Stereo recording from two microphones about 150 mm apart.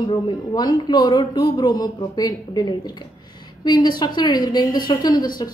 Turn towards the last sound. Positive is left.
turn(degrees=30)  # may be behind; listen again after turning